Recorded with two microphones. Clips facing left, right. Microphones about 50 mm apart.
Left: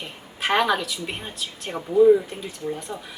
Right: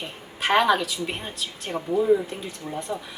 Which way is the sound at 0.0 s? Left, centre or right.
Centre.